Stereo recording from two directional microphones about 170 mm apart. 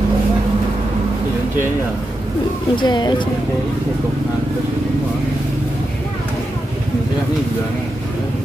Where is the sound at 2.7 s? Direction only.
25° left (ahead or behind).